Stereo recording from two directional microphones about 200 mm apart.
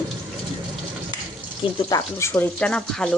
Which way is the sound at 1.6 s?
20° left (ahead or behind).